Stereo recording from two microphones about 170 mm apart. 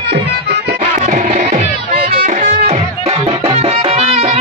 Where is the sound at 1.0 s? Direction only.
50° right (ahead or behind).